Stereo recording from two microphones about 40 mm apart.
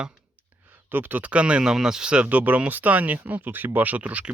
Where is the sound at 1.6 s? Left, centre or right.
Centre.